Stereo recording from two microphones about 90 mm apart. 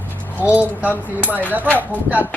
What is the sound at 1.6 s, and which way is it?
Speech, 20° left (ahead or behind).